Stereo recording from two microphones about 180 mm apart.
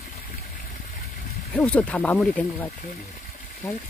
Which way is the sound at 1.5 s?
5° left (ahead or behind).